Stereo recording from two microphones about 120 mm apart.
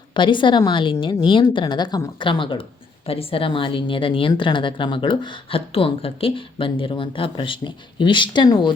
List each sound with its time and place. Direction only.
0.1 s a woman's voice: 40° left (ahead or behind)